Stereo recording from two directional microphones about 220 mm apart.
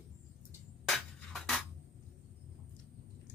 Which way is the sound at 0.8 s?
Centre (ahead or behind).